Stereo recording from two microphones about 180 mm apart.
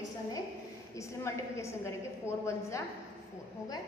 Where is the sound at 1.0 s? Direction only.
15° left (ahead or behind).